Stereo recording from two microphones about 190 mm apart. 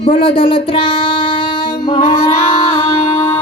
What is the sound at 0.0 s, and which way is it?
Speech, 30° left (ahead or behind).